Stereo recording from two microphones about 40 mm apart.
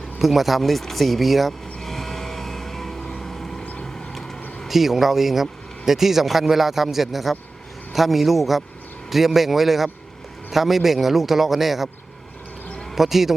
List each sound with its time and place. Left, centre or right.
0.2 s speech: centre
1.8 s vehicle: centre
3.6 s vehicle: left
4.7 s speech: centre
13.0 s speech: centre